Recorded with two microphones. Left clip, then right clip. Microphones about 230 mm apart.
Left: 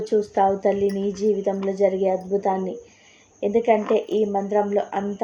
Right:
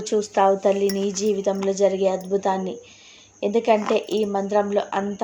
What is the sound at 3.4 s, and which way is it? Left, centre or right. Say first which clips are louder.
Speech: even; centre.